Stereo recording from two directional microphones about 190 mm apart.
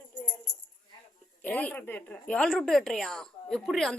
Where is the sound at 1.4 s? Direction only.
5° left (ahead or behind).